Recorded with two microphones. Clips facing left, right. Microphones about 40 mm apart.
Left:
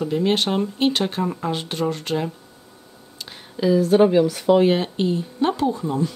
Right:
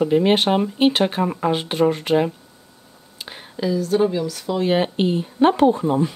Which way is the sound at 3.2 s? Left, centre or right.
Centre.